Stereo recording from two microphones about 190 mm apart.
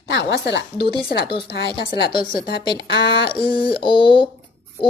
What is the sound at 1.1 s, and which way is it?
Speech, 55° left (ahead or behind).